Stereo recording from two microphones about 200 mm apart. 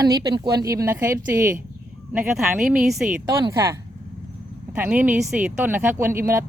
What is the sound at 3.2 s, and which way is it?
Speech, 20° right (ahead or behind).